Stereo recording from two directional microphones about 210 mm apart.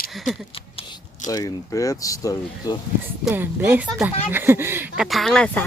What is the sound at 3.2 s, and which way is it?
Speech, 10° right (ahead or behind).